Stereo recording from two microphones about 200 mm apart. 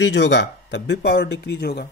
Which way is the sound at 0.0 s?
60° left (ahead or behind).